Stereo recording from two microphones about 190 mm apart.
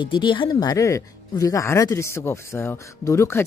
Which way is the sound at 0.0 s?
25° left (ahead or behind).